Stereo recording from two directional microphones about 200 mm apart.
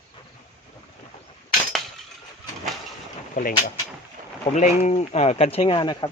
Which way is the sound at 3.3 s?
40° left (ahead or behind).